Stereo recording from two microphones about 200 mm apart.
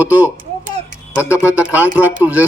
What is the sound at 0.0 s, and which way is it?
Speech, 10° right (ahead or behind).